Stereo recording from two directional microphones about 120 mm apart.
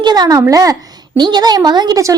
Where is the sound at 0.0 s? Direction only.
35° right (ahead or behind).